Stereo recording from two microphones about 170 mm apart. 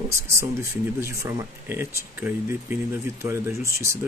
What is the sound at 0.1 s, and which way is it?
Speech, 15° right (ahead or behind).